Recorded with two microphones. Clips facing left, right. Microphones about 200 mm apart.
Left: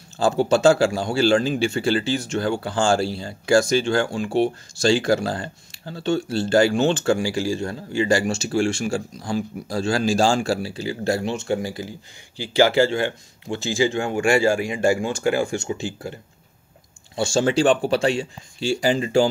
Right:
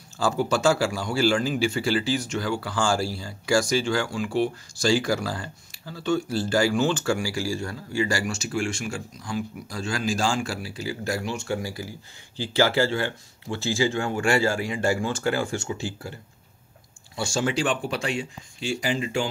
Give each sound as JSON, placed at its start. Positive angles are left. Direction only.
{"t": 0.2, "sound": "speech", "side_deg": 25}
{"t": 3.2, "sound": "speech", "side_deg": 60}
{"t": 3.6, "sound": "speech", "side_deg": 25}